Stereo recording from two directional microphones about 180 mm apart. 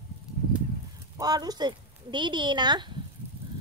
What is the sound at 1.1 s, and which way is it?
Speech, 20° right (ahead or behind).